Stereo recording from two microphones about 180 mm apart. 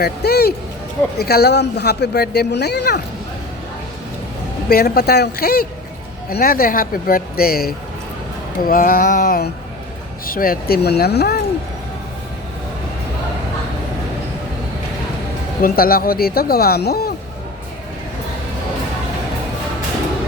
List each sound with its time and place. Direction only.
0.0 s speech: 60° left (ahead or behind)
4.7 s speech: 55° left (ahead or behind)
15.6 s speech: 55° left (ahead or behind)